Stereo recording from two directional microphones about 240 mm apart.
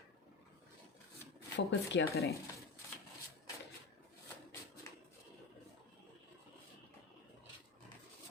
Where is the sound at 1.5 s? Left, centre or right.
Left.